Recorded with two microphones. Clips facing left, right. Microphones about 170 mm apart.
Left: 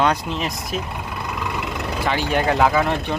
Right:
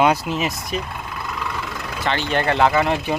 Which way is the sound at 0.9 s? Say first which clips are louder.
Left 1 dB; 20° left (ahead or behind).